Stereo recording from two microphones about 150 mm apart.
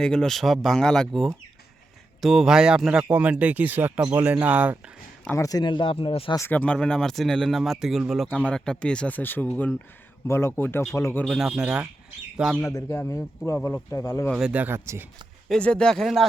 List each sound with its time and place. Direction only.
0.0 s speech: 5° left (ahead or behind)
5.2 s speech: 15° left (ahead or behind); by 6.3 s 35° left (ahead or behind)
6.3 s speech: 15° left (ahead or behind)
11.3 s speech: 5° right (ahead or behind)
12.6 s speech: 20° left (ahead or behind)
14.3 s speech: 5° right (ahead or behind)
15.4 s speech: 5° left (ahead or behind)